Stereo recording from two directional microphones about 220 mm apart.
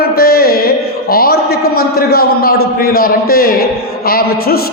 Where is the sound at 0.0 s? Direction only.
45° left (ahead or behind).